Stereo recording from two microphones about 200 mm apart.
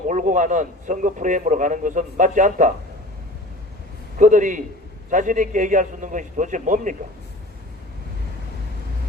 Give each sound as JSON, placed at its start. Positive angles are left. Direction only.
{"t": 0.1, "sound": "a man's voice", "side_deg": -40}
{"t": 4.2, "sound": "a man's voice", "side_deg": -40}